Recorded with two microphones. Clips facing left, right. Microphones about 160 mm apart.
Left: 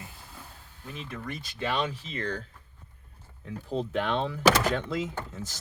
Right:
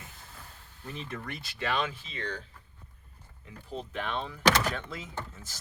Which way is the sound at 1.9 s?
40° left (ahead or behind).